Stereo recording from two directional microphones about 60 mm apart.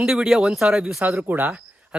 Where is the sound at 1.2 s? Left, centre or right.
Right.